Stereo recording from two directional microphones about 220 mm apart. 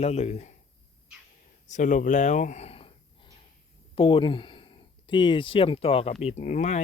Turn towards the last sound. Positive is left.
turn(degrees=30)  # may be behind; listen again after turning